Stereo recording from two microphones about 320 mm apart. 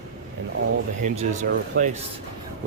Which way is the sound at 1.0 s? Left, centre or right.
Right.